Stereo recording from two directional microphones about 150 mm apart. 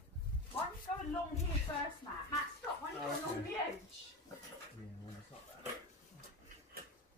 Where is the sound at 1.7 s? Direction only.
25° left (ahead or behind).